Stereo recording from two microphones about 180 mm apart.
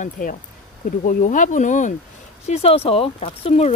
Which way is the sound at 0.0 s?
45° left (ahead or behind).